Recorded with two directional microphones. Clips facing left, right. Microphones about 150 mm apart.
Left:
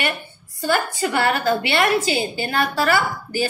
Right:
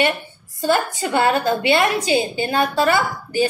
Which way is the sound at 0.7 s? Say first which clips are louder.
Right 2 dB; 20° right (ahead or behind).